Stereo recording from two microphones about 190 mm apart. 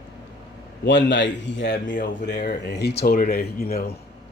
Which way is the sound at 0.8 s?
70° left (ahead or behind).